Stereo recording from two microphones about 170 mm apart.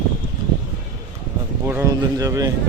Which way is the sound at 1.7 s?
15° right (ahead or behind).